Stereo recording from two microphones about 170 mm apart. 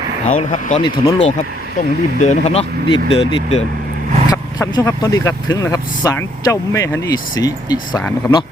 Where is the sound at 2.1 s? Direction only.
45° left (ahead or behind).